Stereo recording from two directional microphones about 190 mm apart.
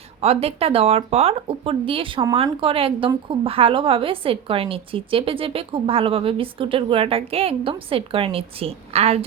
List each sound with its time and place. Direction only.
0.2 s a woman's voice: 30° right (ahead or behind)